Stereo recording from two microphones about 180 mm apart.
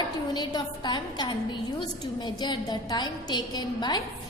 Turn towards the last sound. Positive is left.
turn(degrees=25)  # may be behind; listen again after turning